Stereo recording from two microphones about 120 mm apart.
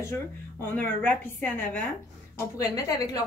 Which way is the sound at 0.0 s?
20° left (ahead or behind).